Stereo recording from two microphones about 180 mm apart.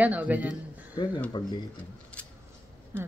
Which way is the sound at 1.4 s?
25° left (ahead or behind).